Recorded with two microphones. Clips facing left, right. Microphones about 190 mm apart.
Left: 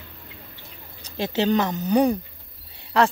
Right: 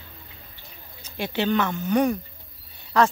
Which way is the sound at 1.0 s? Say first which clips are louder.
Left 3 dB; 40° left (ahead or behind).